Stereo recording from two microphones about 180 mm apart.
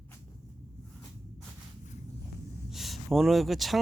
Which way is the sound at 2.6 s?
Centre (ahead or behind).